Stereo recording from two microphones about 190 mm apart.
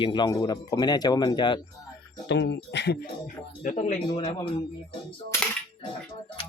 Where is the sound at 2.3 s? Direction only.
65° left (ahead or behind); by 4.0 s 40° left (ahead or behind).